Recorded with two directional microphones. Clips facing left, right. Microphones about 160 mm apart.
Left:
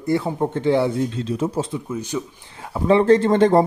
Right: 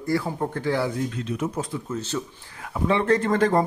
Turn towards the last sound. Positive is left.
turn(degrees=30)  # may be behind; listen again after turning